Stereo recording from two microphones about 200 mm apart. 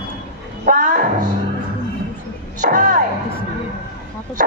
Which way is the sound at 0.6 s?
40° right (ahead or behind).